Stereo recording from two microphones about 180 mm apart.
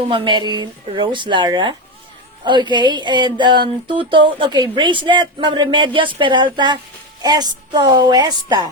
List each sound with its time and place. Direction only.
0.0 s speech: 30° right (ahead or behind)